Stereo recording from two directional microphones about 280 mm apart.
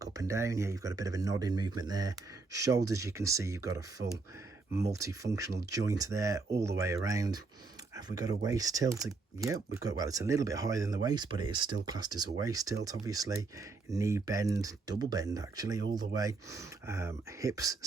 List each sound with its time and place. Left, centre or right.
0.0 s speech: centre